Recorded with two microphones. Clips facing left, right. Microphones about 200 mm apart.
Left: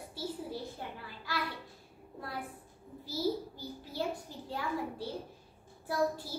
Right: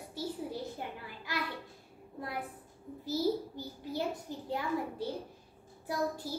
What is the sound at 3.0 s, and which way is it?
A child's voice, 20° right (ahead or behind).